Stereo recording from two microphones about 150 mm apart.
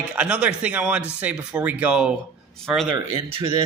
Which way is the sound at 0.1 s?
10° right (ahead or behind).